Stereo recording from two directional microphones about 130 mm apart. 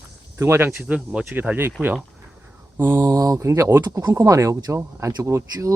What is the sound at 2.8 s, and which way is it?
Speech, 20° right (ahead or behind).